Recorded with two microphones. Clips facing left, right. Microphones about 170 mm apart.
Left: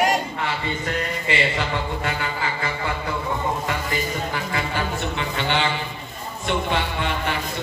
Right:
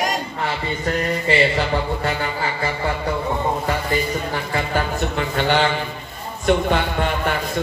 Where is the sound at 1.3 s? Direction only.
35° right (ahead or behind).